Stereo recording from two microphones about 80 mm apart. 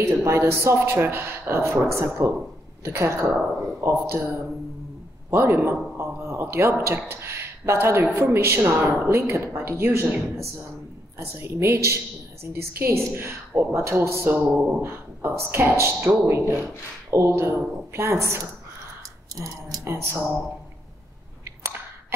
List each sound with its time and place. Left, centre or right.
0.0 s a woman's voice: right
14.5 s speech: centre
14.8 s a woman's voice: right